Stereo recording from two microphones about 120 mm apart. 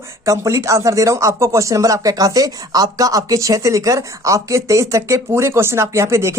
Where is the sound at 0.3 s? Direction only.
25° right (ahead or behind).